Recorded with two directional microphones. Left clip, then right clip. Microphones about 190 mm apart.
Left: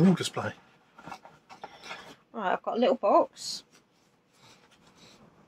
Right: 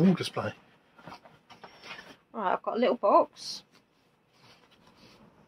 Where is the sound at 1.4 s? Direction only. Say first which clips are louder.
Left 4 dB; centre (ahead or behind).